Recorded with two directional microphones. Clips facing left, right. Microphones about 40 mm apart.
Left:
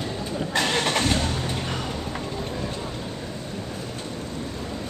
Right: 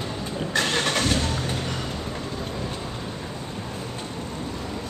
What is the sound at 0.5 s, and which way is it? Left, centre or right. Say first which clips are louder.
Vehicle: even; centre.